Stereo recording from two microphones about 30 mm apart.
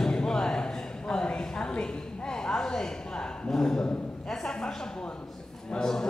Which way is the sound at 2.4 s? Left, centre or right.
Left.